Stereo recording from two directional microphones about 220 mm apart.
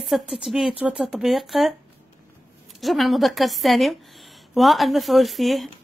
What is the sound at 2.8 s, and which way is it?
A woman's voice, centre (ahead or behind).